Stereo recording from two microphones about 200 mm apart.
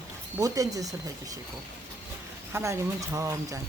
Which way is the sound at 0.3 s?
15° right (ahead or behind).